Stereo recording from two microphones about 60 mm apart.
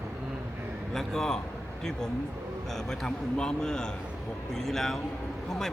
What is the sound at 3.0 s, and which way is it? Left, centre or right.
A man's voice, centre.